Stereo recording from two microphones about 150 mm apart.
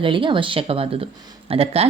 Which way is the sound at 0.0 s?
35° right (ahead or behind).